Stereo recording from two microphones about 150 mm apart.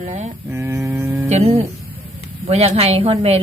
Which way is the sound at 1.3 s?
45° right (ahead or behind).